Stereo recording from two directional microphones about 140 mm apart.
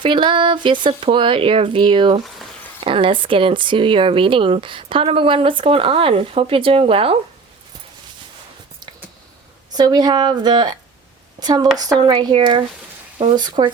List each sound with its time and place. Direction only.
0.0 s speech: 35° right (ahead or behind)
9.7 s speech: 30° right (ahead or behind)